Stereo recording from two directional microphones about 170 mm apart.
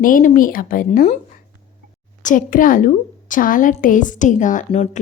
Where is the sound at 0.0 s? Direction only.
55° left (ahead or behind).